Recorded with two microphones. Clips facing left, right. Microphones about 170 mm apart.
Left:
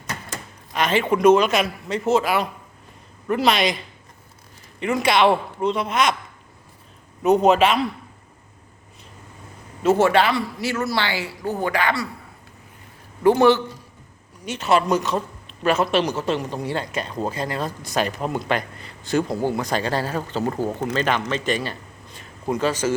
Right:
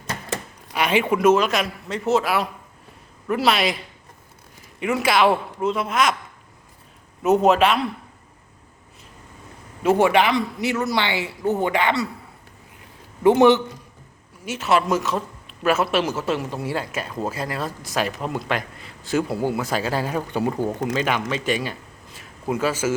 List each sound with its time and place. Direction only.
0.7 s a sound: 10° right (ahead or behind)
1.1 s speech: 5° right (ahead or behind)
7.2 s speech: centre (ahead or behind)
9.8 s speech: 10° right (ahead or behind)
13.2 s speech: 20° right (ahead or behind)
14.4 s a man's voice: 5° right (ahead or behind)